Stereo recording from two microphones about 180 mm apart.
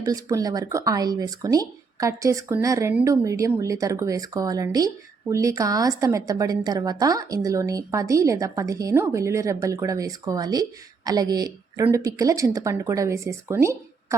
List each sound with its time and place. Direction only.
0.0 s a woman's voice: 20° right (ahead or behind)